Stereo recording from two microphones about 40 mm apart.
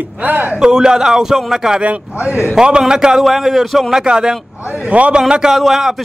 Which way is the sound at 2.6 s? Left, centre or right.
Centre.